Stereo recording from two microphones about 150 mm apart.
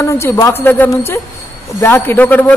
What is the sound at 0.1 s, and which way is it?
A man's voice, 15° left (ahead or behind).